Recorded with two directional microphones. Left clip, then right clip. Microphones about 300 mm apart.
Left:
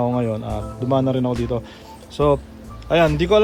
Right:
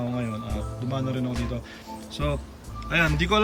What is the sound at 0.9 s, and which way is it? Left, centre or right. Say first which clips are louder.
A man's voice: left 12 dB; centre.